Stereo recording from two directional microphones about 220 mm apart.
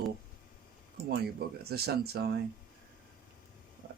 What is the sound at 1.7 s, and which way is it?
Speech, 45° right (ahead or behind).